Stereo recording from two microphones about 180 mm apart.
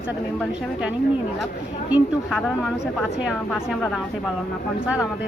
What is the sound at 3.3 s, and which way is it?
Speech, 5° left (ahead or behind).